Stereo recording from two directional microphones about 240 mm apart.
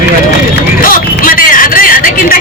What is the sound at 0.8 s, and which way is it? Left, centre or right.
Hubbub, left.